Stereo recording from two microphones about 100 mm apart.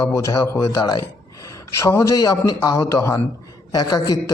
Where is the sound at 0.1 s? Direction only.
30° left (ahead or behind).